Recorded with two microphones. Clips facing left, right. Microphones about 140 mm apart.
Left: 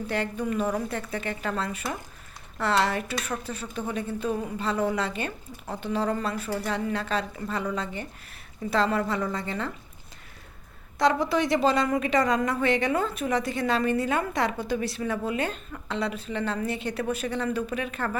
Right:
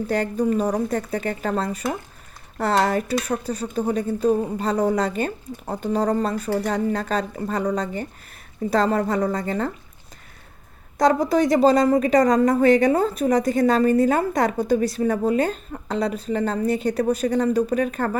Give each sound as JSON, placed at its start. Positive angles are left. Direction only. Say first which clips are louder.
{"t": 0.1, "sound": "a woman's voice", "louder": "right 7 dB", "side_deg": -40}
{"t": 10.9, "sound": "a woman's voice", "louder": "right 5 dB", "side_deg": -40}